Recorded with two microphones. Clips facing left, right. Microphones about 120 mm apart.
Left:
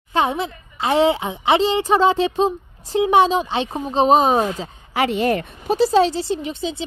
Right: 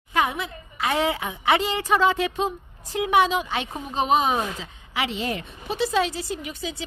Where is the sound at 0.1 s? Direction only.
30° left (ahead or behind); by 5.8 s 55° left (ahead or behind).